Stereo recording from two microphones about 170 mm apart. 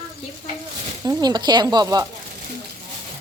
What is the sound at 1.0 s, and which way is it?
Speech, 25° right (ahead or behind).